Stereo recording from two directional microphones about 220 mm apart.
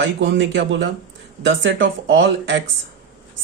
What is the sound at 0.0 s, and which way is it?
A man's voice, 55° right (ahead or behind).